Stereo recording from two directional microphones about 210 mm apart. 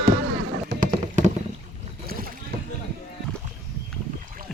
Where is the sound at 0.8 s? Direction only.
35° right (ahead or behind).